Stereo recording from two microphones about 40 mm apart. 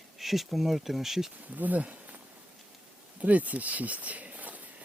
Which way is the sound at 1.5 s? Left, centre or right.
Right.